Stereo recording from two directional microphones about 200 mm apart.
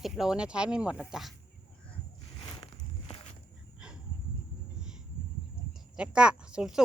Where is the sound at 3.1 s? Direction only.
25° left (ahead or behind).